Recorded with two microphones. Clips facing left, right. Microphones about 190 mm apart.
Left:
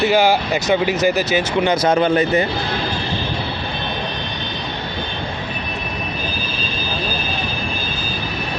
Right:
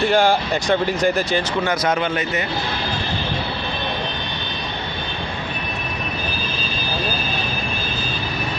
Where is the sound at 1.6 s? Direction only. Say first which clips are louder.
Left 5 dB; 25° left (ahead or behind).